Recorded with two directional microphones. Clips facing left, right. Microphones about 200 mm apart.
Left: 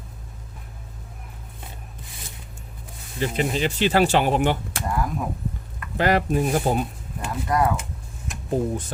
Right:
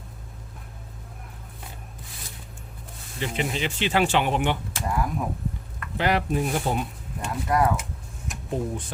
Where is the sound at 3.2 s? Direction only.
40° left (ahead or behind).